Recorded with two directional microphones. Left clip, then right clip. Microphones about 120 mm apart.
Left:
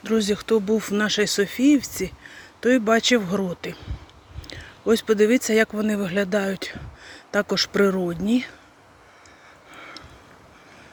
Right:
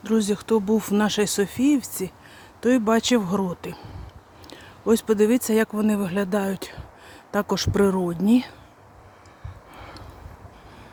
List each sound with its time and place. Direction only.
0.0 s speech: 15° right (ahead or behind)
2.6 s speech: 20° right (ahead or behind)